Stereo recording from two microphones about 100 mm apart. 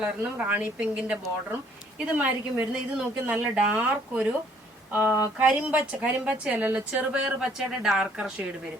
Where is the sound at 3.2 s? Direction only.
10° right (ahead or behind).